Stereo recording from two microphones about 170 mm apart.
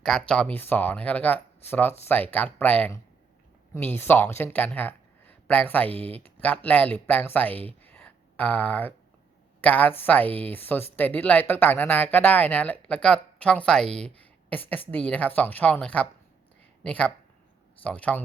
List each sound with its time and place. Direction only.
0.0 s speech: 5° left (ahead or behind)